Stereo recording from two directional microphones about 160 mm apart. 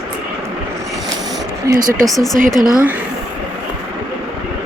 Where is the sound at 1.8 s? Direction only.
60° right (ahead or behind).